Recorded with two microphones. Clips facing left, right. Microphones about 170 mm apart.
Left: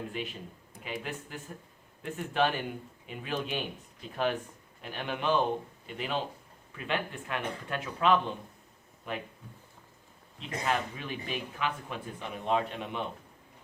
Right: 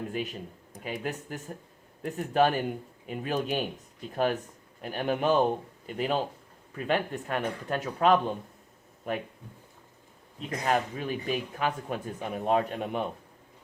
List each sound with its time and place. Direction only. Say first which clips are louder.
0.1 s a man's voice: right 4 dB; 40° right (ahead or behind)
10.7 s a man's voice: right 5 dB; 45° right (ahead or behind)